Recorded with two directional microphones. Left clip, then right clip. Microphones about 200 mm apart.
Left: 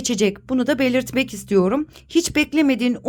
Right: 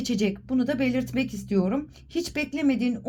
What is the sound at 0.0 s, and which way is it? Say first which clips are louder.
A woman's voice: left 7 dB; 25° left (ahead or behind).